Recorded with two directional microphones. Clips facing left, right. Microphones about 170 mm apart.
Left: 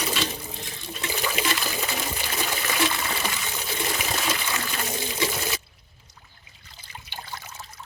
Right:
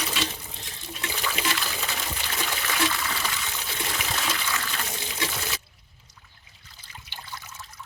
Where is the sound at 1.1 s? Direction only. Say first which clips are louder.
Left 2 dB; 10° left (ahead or behind).